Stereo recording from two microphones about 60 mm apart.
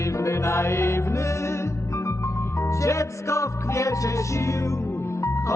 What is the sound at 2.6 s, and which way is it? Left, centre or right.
Music, left.